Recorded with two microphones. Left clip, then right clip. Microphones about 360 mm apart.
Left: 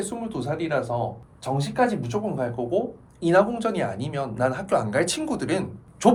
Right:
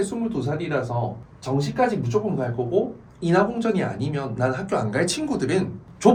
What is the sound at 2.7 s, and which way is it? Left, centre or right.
Speech, left.